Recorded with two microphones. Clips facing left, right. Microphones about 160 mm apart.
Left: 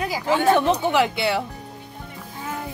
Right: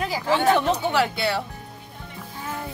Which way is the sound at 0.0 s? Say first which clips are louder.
Left 1 dB; 15° left (ahead or behind).